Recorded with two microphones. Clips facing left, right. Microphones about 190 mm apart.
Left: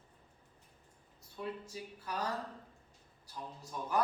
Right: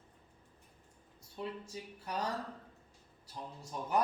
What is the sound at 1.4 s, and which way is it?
Speech, 25° right (ahead or behind).